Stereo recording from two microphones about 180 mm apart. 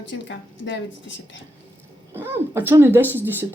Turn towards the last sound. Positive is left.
turn(degrees=-10)  # may be behind; listen again after turning